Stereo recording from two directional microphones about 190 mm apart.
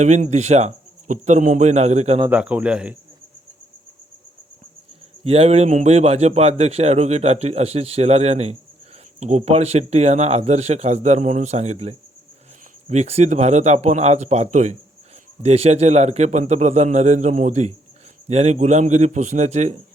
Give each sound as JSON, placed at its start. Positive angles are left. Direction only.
{"t": 0.0, "sound": "a man's voice", "side_deg": -35}
{"t": 2.3, "sound": "speech", "side_deg": -5}
{"t": 5.2, "sound": "a man's voice", "side_deg": -30}